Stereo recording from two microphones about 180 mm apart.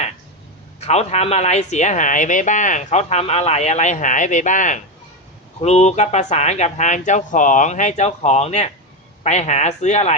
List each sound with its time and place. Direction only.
0.8 s speech: 35° left (ahead or behind)